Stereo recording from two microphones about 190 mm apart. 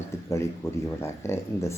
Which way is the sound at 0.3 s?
15° left (ahead or behind).